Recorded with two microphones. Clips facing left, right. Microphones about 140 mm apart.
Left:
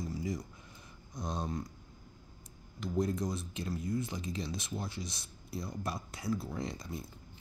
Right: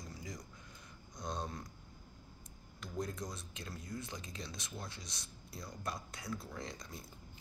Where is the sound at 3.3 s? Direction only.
5° left (ahead or behind).